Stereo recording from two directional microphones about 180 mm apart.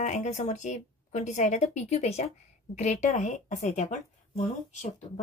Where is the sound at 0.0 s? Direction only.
40° left (ahead or behind).